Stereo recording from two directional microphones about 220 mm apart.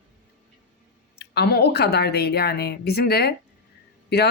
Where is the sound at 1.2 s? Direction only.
50° left (ahead or behind).